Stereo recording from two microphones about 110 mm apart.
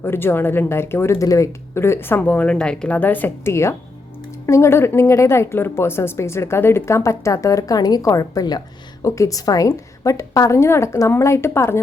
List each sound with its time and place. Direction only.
0.0 s speech: 20° left (ahead or behind)